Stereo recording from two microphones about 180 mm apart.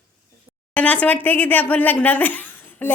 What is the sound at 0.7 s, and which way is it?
Speech, 5° left (ahead or behind).